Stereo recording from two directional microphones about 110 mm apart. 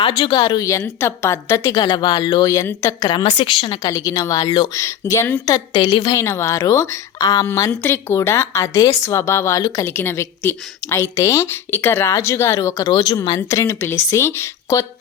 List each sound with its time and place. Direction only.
0.0 s a woman's voice: 45° left (ahead or behind)
0.8 s a woman's voice: 25° left (ahead or behind)
1.8 s a woman's voice: 40° left (ahead or behind)
3.8 s a woman's voice: 35° left (ahead or behind)
6.1 s a woman's voice: 25° left (ahead or behind)
7.7 s a woman's voice: 20° left (ahead or behind)
9.9 s a woman's voice: 20° left (ahead or behind)